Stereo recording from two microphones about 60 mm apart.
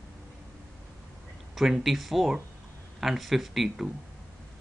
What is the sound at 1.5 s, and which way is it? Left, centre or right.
Speech, centre.